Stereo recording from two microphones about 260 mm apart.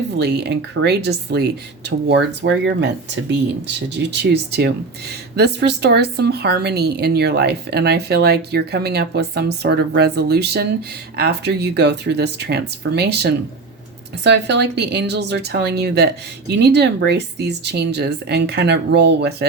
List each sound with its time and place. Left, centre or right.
0.2 s speech: right